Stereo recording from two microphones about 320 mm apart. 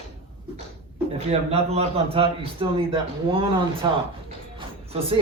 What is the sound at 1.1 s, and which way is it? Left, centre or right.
A man's voice, centre.